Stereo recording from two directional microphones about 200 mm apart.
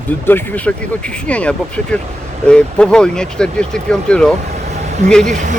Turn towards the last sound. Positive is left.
turn(degrees=-40)  # may be behind; listen again after turning